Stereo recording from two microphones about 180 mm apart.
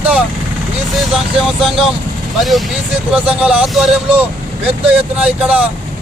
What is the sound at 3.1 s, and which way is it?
Speech, 5° right (ahead or behind).